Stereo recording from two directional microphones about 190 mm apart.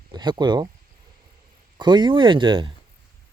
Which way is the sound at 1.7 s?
25° right (ahead or behind).